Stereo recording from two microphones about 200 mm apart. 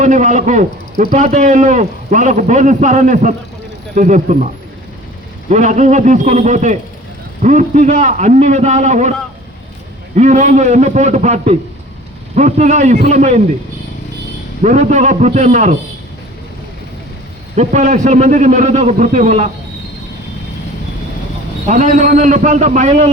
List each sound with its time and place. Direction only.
0.0 s a man's voice: 40° right (ahead or behind)
5.5 s a man's voice: 35° right (ahead or behind)
10.2 s a man's voice: 35° right (ahead or behind)
14.6 s a man's voice: 35° right (ahead or behind)
17.5 s a man's voice: 35° right (ahead or behind)
21.7 s a man's voice: 35° right (ahead or behind)